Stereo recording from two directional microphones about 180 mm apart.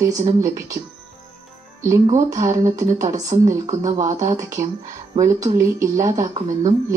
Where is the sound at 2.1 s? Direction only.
20° right (ahead or behind).